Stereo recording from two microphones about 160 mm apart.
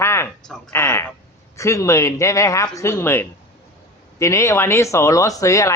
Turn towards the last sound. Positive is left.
turn(degrees=20)  # may be behind; listen again after turning